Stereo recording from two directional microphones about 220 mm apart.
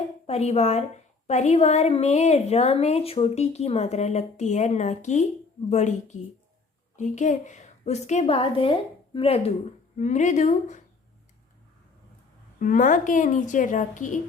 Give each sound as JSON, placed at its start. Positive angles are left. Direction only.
{"t": 0.3, "sound": "a woman's voice", "side_deg": 30}
{"t": 12.5, "sound": "a woman's voice", "side_deg": 35}